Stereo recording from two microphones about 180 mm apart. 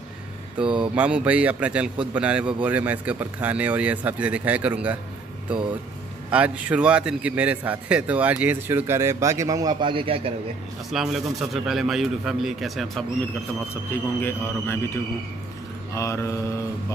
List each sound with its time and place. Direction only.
0.6 s a man's voice: 5° right (ahead or behind)
6.3 s a man's voice: 5° right (ahead or behind); by 10.3 s 30° right (ahead or behind)
10.9 s speech: centre (ahead or behind)
14.2 s mantra: 10° left (ahead or behind)
15.9 s mantra: 15° left (ahead or behind)